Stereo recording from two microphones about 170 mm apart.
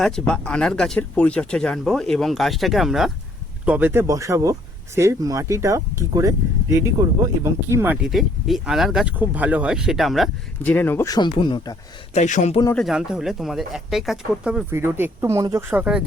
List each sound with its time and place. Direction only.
0.0 s speech: 5° left (ahead or behind)
3.7 s speech: 10° right (ahead or behind)
8.0 s speech: centre (ahead or behind); by 11.8 s 25° left (ahead or behind)
12.1 s a man's voice: 45° left (ahead or behind)
12.7 s speech: centre (ahead or behind)
14.7 s speech: 15° right (ahead or behind)
15.7 s speech: 5° right (ahead or behind)